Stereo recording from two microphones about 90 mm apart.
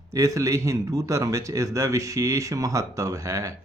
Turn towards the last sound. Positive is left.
turn(degrees=-40)  # may be behind; listen again after turning